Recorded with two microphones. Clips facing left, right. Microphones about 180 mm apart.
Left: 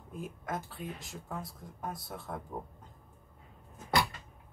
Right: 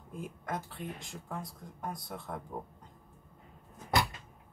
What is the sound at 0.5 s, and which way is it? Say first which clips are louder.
Speech: even; centre (ahead or behind).